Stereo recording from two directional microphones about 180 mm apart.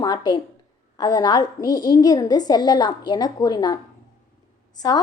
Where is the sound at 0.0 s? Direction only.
20° left (ahead or behind).